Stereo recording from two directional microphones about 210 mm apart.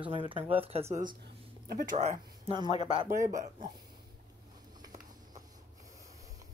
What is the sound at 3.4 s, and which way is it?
Speech, 30° right (ahead or behind).